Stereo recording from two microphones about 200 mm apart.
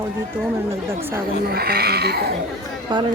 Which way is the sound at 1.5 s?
50° right (ahead or behind).